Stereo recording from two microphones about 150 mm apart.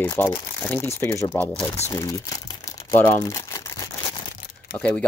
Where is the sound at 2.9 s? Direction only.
20° left (ahead or behind).